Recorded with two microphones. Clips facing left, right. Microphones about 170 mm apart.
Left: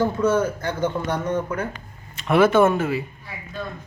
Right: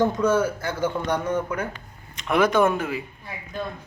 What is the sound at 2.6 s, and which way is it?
Speech, 5° left (ahead or behind).